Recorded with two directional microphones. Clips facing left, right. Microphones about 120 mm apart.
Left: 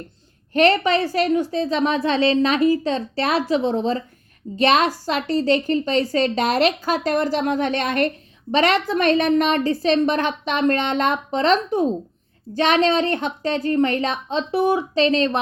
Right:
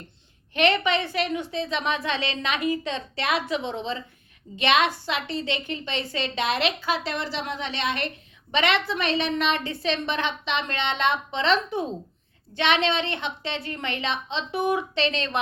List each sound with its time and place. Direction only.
0.5 s a woman's voice: 40° left (ahead or behind)